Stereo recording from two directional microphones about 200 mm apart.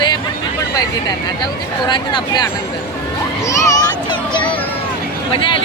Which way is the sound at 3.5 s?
15° left (ahead or behind).